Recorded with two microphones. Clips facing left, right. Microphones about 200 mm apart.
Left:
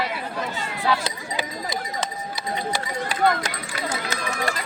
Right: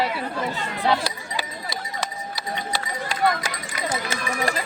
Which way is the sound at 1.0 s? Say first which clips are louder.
Left 1 dB; 20° left (ahead or behind).